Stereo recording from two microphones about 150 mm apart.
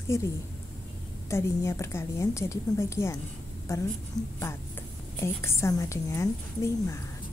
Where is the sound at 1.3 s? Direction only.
20° left (ahead or behind).